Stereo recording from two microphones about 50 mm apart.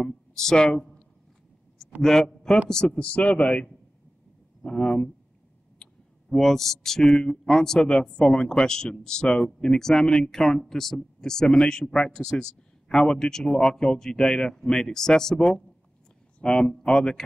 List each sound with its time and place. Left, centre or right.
0.0 s speech: centre
2.0 s a man's voice: centre
2.7 s speech: left
4.6 s speech: centre
6.3 s speech: centre